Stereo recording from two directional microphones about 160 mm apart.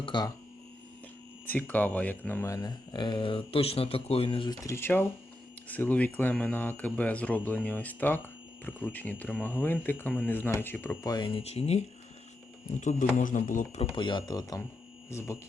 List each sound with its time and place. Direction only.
0.0 s hum: 30° left (ahead or behind)
1.5 s speech: 10° left (ahead or behind); by 4.5 s 35° left (ahead or behind)
4.6 s speech: 15° left (ahead or behind)